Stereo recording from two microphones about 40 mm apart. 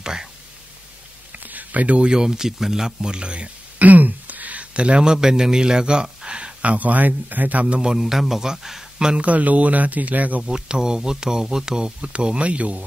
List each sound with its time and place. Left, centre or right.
0.0 s speech: centre
1.3 s a sound: right
2.0 s speech: centre
3.8 s speech: right
6.2 s a sound: right
6.6 s speech: right
7.6 s speech: right
9.2 s speech: right
10.5 s speech: right